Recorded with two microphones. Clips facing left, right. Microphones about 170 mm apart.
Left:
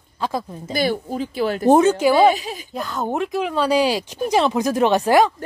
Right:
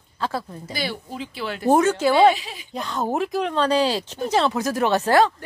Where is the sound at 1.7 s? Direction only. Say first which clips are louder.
Left 3 dB; 20° left (ahead or behind).